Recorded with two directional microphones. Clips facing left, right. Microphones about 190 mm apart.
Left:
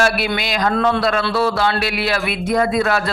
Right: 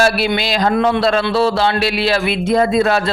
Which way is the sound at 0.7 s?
20° right (ahead or behind).